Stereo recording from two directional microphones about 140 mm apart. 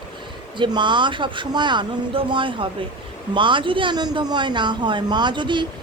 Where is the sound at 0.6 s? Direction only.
35° right (ahead or behind).